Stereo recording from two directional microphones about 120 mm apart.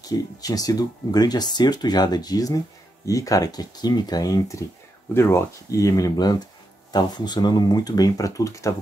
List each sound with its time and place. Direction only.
0.0 s speech: 30° left (ahead or behind)